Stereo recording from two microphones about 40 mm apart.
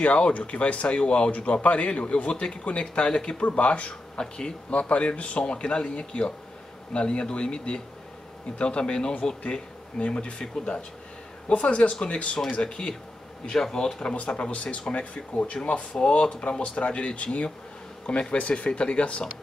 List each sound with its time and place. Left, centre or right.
0.0 s a man's voice: left
4.2 s speech: centre
4.7 s a man's voice: left
11.4 s speech: left